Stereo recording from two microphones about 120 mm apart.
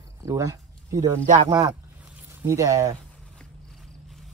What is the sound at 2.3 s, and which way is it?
Speech, 20° right (ahead or behind).